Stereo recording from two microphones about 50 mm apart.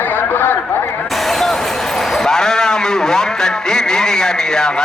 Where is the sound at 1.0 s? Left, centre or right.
Centre.